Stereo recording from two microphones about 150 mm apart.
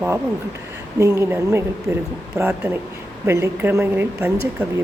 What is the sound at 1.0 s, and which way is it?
Speech, 20° right (ahead or behind).